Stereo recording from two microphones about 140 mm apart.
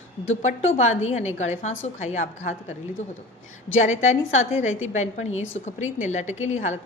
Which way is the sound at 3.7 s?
55° left (ahead or behind).